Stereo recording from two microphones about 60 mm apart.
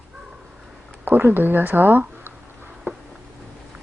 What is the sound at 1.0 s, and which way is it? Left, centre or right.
Speech, right.